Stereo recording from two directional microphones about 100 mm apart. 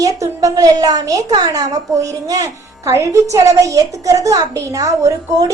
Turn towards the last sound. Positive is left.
turn(degrees=-35)  # may be behind; listen again after turning